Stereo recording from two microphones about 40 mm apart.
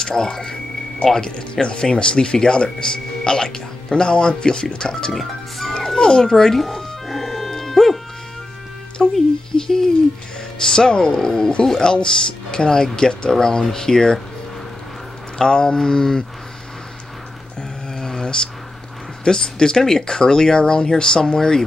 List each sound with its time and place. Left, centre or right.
0.0 s speech: centre
5.1 s speech: centre
5.9 s a child's voice: centre
6.6 s music: centre
9.0 s music: centre
9.5 s a sound: centre
10.6 s speech: centre
15.3 s speech: centre
17.6 s a sound: centre
19.2 s speech: centre